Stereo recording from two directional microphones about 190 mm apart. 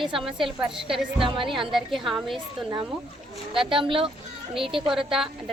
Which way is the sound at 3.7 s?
25° right (ahead or behind).